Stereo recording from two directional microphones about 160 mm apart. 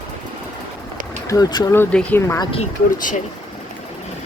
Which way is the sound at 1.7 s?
10° left (ahead or behind).